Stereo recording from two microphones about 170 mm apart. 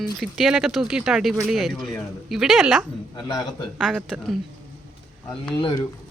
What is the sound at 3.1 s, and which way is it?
Speech, 25° left (ahead or behind).